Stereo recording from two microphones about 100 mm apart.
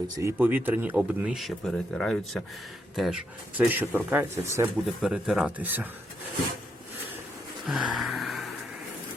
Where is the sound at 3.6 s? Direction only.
20° right (ahead or behind).